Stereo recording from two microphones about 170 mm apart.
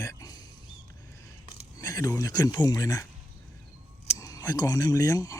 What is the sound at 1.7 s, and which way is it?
Speech, 20° left (ahead or behind).